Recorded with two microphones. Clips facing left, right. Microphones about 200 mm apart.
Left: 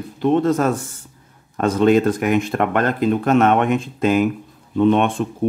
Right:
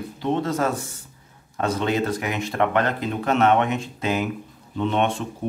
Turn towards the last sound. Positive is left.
turn(degrees=50)  # may be behind; listen again after turning